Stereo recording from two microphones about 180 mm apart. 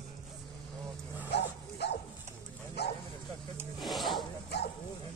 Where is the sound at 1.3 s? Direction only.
70° left (ahead or behind).